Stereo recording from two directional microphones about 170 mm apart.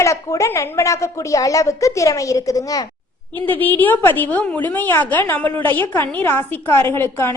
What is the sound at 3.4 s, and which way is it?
A woman's voice, 10° left (ahead or behind).